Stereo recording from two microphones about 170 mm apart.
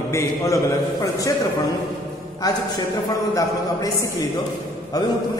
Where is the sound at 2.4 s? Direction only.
20° left (ahead or behind).